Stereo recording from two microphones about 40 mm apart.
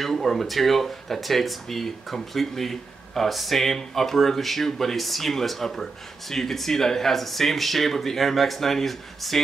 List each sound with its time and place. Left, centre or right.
0.0 s speech: centre